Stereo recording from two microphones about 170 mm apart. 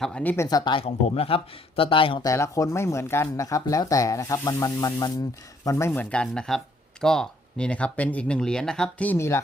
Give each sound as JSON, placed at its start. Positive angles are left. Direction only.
{"t": 0.0, "sound": "speech", "side_deg": 5}
{"t": 0.4, "sound": "speech", "side_deg": 25}
{"t": 2.2, "sound": "speech", "side_deg": 20}